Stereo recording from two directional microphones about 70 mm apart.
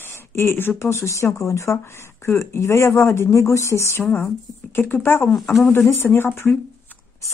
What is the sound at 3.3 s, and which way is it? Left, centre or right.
Speech, left.